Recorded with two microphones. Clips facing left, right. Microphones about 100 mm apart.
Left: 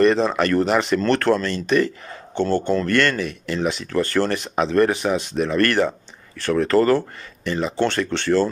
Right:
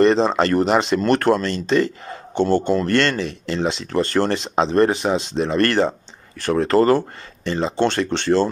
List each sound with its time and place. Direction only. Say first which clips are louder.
0.0 s speech: right 2 dB; 25° right (ahead or behind)